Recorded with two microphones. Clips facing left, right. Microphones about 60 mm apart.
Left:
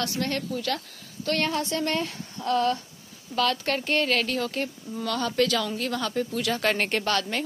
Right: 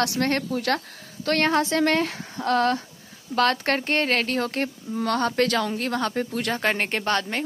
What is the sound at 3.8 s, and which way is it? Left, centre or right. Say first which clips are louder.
Speech: right 1 dB; right.